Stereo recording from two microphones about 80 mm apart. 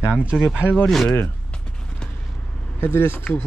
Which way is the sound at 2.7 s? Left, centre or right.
Left.